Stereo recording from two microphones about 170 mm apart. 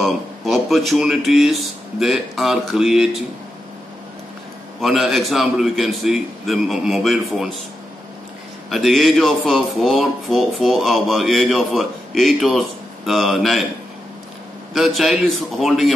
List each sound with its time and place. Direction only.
0.0 s speech: centre (ahead or behind)
4.7 s speech: centre (ahead or behind)
8.6 s speech: centre (ahead or behind)
14.7 s speech: centre (ahead or behind)